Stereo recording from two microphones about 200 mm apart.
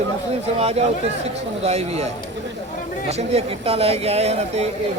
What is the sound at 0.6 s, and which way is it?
Speech, 30° right (ahead or behind).